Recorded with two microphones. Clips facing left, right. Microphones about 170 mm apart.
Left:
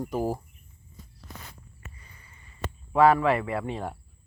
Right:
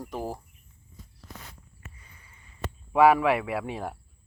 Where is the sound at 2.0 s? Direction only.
10° right (ahead or behind).